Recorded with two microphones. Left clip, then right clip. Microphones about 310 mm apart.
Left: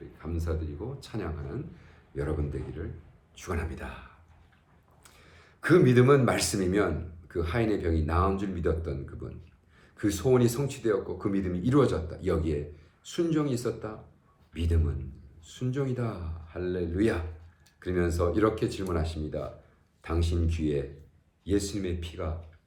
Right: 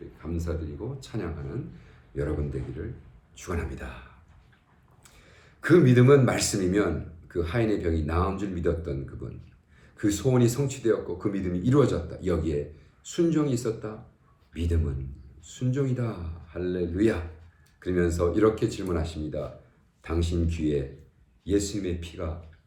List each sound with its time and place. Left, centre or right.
0.2 s speech: centre
5.0 s speech: centre